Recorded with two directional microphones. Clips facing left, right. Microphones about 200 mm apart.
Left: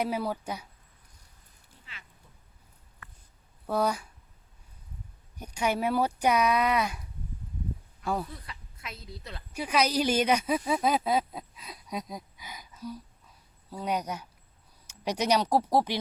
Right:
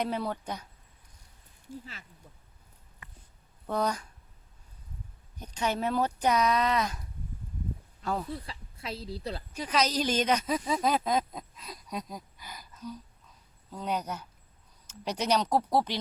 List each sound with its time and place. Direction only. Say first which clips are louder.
0.0 s a woman's voice: left 1 dB; 5° left (ahead or behind)
1.8 s speech: right 6 dB; 40° right (ahead or behind)
3.0 s a sound: left 1 dB; 20° right (ahead or behind)
3.7 s a woman's voice: left 2 dB; 10° left (ahead or behind)
5.4 s a woman's voice: left 2 dB; 10° left (ahead or behind)
8.0 s speech: left 1 dB; 10° left (ahead or behind)
8.3 s a woman's voice: right 7 dB; 30° right (ahead or behind)
9.5 s a woman's voice: left 2 dB; 10° left (ahead or behind)